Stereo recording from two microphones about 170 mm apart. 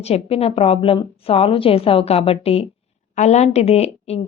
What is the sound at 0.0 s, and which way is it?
Speech, 35° left (ahead or behind).